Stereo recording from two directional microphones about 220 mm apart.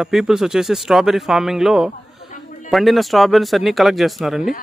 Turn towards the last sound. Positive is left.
turn(degrees=0)  # may be behind; listen again after turning